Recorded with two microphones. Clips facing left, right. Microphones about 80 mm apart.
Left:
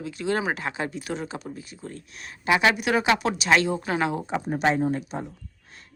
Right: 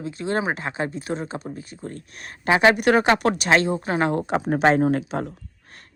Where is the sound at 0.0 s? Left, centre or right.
Right.